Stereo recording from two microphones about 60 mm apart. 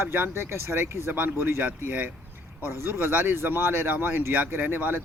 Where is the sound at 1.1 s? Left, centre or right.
Right.